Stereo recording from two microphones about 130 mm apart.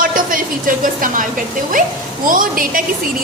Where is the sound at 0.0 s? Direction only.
90° right.